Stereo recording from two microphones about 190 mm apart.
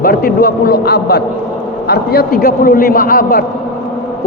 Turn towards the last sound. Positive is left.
turn(degrees=50)  # may be behind; listen again after turning